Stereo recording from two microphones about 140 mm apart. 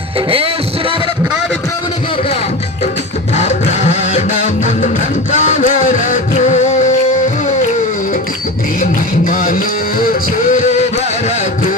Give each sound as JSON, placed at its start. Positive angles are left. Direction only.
{"t": 0.3, "sound": "music", "side_deg": -40}
{"t": 3.3, "sound": "music", "side_deg": 55}
{"t": 8.8, "sound": "music", "side_deg": 75}
{"t": 10.5, "sound": "music", "side_deg": 60}